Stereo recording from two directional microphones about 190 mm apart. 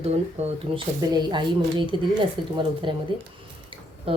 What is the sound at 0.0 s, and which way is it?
Speech, 35° right (ahead or behind).